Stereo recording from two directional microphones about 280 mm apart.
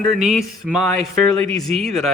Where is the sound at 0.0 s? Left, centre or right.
Centre.